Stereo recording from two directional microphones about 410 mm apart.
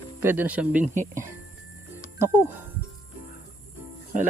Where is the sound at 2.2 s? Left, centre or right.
Centre.